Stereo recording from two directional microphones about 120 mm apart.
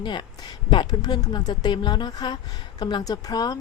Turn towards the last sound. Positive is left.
turn(degrees=35)  # may be behind; listen again after turning